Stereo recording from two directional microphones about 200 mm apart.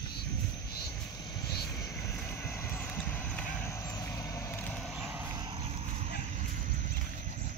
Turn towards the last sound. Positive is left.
turn(degrees=-30)  # may be behind; listen again after turning